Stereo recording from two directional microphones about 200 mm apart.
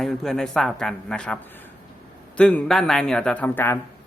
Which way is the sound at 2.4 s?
5° left (ahead or behind).